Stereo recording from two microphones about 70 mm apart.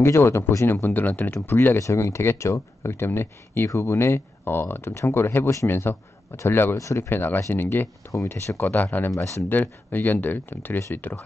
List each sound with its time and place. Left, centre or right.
0.0 s speech: left
0.7 s speech: left
1.8 s speech: left
6.8 s speech: left
7.1 s speech: left
9.1 s speech: left
9.5 s speech: left